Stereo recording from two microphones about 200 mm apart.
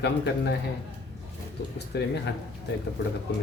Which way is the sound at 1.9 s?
55° left (ahead or behind).